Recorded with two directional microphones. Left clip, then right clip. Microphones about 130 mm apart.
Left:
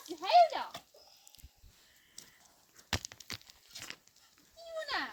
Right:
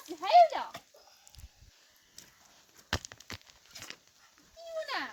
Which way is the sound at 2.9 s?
75° right (ahead or behind).